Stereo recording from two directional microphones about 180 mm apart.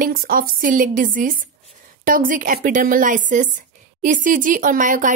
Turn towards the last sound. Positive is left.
turn(degrees=-45)  # may be behind; listen again after turning